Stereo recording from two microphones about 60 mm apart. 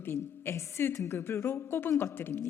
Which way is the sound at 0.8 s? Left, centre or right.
Left.